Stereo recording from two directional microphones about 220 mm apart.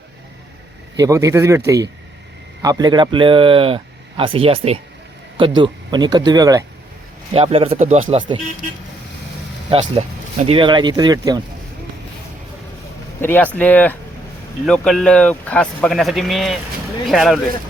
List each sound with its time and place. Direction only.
0.9 s speech: 15° right (ahead or behind)
7.3 s speech: 25° right (ahead or behind)
9.6 s speech: 25° right (ahead or behind)
13.2 s speech: 10° left (ahead or behind)